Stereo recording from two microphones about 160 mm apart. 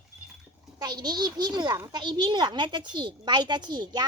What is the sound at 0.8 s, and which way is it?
A child's voice, 25° right (ahead or behind).